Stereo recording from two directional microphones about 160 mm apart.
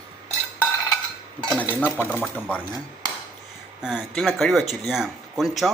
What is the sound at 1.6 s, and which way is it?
Speech, 10° right (ahead or behind).